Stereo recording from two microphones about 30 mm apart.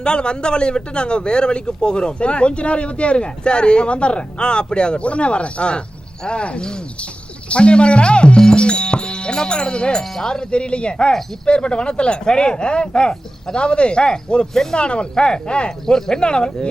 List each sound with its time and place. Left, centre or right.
0.0 s speech: left
10.0 s speech: centre
14.5 s speech: centre
14.8 s speech: left
15.9 s speech: left